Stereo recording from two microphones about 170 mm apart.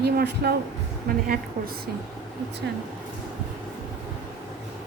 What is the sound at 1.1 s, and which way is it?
Speech, 60° right (ahead or behind).